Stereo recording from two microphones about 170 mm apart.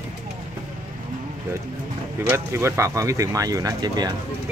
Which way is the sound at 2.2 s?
15° right (ahead or behind).